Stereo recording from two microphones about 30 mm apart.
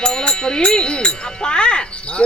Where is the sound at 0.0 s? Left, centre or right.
Left.